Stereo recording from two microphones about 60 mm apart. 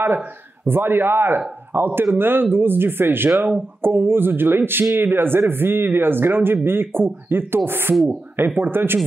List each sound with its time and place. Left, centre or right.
0.7 s speech: right